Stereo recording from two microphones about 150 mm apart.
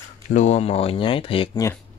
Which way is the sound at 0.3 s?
50° left (ahead or behind).